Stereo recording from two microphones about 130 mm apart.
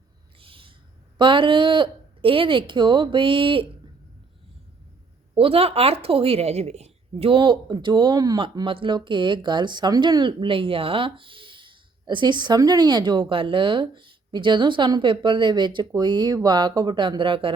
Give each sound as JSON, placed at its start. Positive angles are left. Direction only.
{"t": 0.3, "sound": "a sound", "side_deg": -45}
{"t": 1.2, "sound": "speech", "side_deg": -40}
{"t": 5.3, "sound": "speech", "side_deg": -45}